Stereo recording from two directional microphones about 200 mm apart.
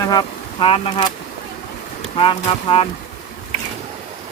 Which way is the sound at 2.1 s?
25° left (ahead or behind).